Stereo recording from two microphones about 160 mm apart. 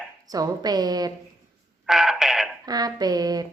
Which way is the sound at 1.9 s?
Centre (ahead or behind).